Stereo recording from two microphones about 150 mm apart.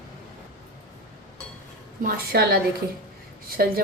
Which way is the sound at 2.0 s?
85° right.